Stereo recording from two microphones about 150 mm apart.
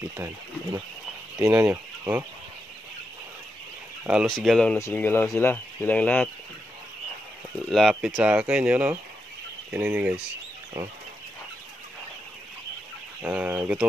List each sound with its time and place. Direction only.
0.2 s speech: 20° right (ahead or behind)
4.0 s speech: 5° right (ahead or behind)
4.7 s speech: 15° left (ahead or behind)
7.6 s speech: centre (ahead or behind)
13.2 s speech: 10° right (ahead or behind)